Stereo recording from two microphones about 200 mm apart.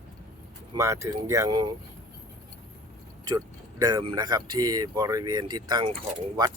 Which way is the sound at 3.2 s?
20° right (ahead or behind).